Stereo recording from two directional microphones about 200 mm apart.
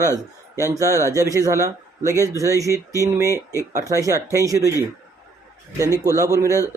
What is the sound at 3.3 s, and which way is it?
Speech, 15° left (ahead or behind).